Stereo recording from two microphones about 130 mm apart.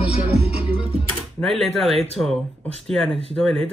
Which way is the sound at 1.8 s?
50° right (ahead or behind).